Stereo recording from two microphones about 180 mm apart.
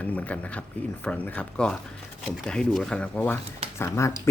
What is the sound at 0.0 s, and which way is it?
Speech, 10° left (ahead or behind).